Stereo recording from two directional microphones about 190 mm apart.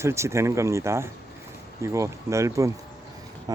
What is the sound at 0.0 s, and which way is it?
Speech, 15° right (ahead or behind).